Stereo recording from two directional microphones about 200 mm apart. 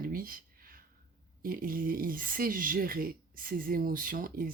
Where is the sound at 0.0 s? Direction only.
45° right (ahead or behind).